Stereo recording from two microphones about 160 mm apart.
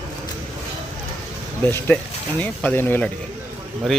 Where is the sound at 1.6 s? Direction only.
15° left (ahead or behind).